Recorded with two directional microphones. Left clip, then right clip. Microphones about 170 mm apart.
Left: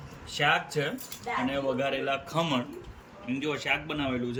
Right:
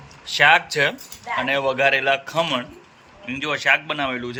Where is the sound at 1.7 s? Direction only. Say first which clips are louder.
Right 12 dB; 45° right (ahead or behind).